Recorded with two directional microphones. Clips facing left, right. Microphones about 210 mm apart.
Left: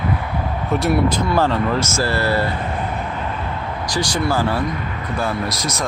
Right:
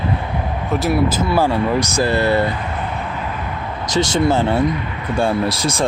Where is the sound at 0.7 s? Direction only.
Centre (ahead or behind); by 2.5 s 20° right (ahead or behind).